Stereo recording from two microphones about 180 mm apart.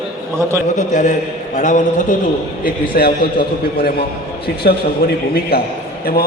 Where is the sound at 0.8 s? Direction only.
45° left (ahead or behind).